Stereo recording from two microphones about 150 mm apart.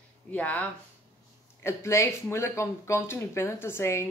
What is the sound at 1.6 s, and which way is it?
Speech, 20° left (ahead or behind).